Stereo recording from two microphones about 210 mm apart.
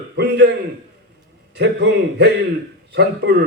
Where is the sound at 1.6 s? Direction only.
55° right (ahead or behind).